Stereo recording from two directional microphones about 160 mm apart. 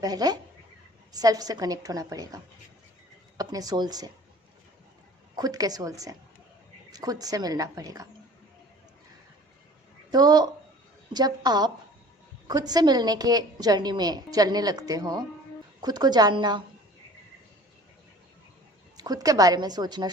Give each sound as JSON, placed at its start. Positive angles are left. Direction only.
{"t": 0.0, "sound": "a woman's voice", "side_deg": -25}
{"t": 5.4, "sound": "a woman's voice", "side_deg": -25}
{"t": 10.1, "sound": "a woman's voice", "side_deg": -25}
{"t": 18.9, "sound": "a woman's voice", "side_deg": -25}